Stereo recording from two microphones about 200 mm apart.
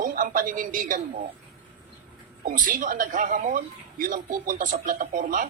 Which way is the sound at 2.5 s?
40° right (ahead or behind).